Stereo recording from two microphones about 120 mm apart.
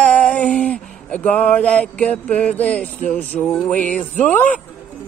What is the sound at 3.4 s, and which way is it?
Music, centre (ahead or behind).